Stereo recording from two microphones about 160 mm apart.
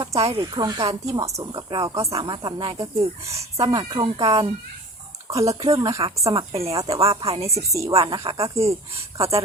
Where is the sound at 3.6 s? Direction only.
25° right (ahead or behind).